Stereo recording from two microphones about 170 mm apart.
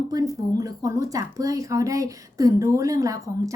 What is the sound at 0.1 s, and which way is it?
Speech, 20° right (ahead or behind).